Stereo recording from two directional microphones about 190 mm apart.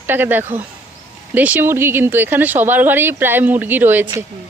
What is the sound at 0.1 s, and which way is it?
Speech, 10° right (ahead or behind).